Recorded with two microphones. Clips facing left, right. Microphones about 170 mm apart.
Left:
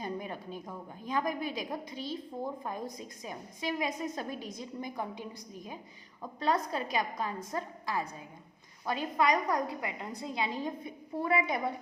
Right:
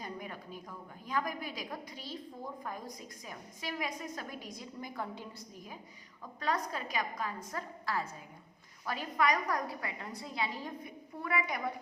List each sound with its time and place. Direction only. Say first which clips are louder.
0.0 s a woman's voice: left 5 dB; 25° left (ahead or behind)
6.4 s a woman's voice: left 4 dB; 25° left (ahead or behind)